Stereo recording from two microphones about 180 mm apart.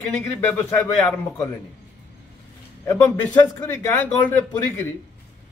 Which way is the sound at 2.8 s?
20° left (ahead or behind).